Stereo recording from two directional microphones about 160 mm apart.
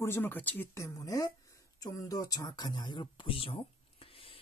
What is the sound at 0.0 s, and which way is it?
Speech, 15° left (ahead or behind).